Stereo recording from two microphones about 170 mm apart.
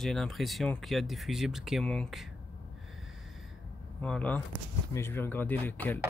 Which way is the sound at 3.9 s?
10° left (ahead or behind).